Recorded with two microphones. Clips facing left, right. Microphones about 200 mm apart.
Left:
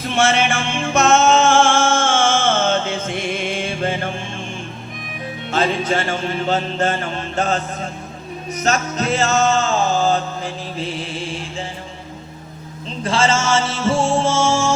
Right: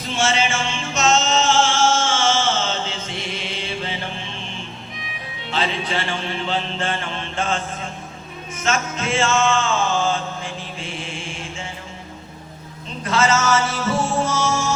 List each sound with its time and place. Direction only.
0.1 s music: 60° left (ahead or behind); by 11.6 s 35° left (ahead or behind)
13.1 s music: 30° left (ahead or behind)